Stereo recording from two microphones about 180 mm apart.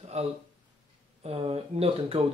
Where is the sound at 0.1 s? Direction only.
35° right (ahead or behind).